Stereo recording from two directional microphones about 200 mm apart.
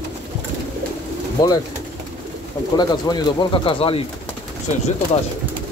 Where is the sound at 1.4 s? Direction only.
20° left (ahead or behind).